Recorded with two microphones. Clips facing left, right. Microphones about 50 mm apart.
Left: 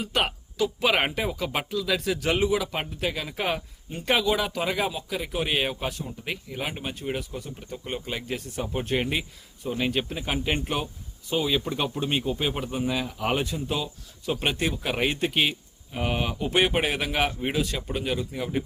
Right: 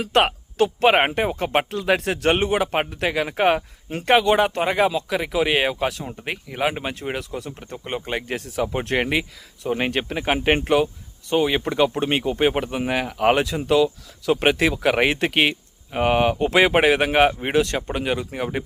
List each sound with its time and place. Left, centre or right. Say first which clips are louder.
0.0 s speech: right 8 dB; right
0.3 s speech: right 6 dB; right
4.9 s speech: right 7 dB; right
6.2 s speech: right 9 dB; right
7.6 s speech: right 4 dB; right
8.4 s speech: right 5 dB; right
9.6 s speech: right 4 dB; right
11.3 s speech: right 5 dB; right
13.4 s speech: right 10 dB; right
14.9 s speech: right 6 dB; right
16.5 s speech: right 6 dB; right